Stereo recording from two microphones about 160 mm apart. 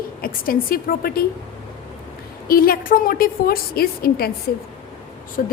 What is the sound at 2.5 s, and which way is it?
A woman's voice, 65° left (ahead or behind).